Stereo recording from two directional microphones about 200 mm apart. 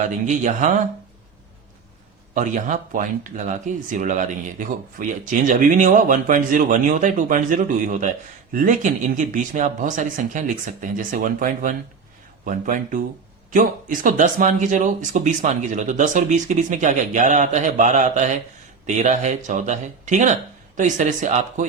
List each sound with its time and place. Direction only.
0.0 s speech: 40° right (ahead or behind)
2.3 s speech: 40° right (ahead or behind)